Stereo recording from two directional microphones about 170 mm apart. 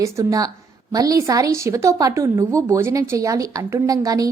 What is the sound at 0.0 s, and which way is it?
A woman's voice, 20° right (ahead or behind).